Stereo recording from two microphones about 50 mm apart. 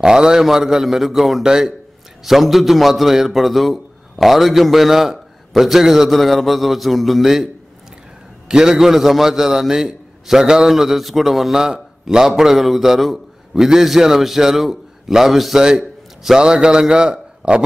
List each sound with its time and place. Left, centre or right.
0.0 s a man's voice: centre
2.2 s a man's voice: centre
8.5 s a man's voice: centre
16.3 s a man's voice: centre